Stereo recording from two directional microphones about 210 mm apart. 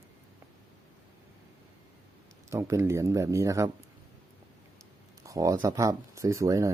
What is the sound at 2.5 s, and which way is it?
Speech, 15° right (ahead or behind).